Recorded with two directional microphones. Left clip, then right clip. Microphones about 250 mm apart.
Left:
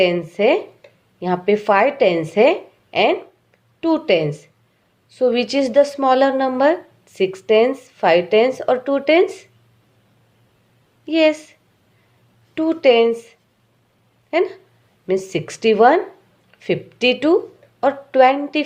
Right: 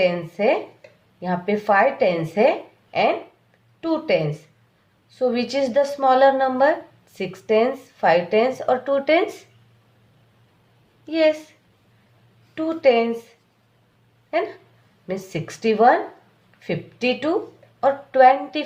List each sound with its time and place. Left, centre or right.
0.0 s a woman's voice: left
11.0 s a woman's voice: left
12.5 s a woman's voice: left
15.0 s a woman's voice: left